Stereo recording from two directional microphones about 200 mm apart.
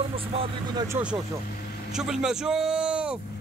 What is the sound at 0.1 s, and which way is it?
Speech, 30° right (ahead or behind).